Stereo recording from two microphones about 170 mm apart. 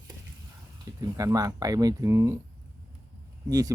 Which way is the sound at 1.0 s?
20° right (ahead or behind).